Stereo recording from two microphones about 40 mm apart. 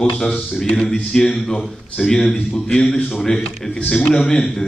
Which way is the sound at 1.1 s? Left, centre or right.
Centre.